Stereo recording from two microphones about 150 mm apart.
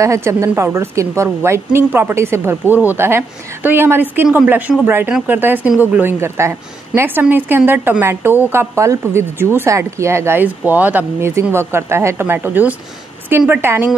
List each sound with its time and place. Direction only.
0.0 s a woman's voice: 20° right (ahead or behind)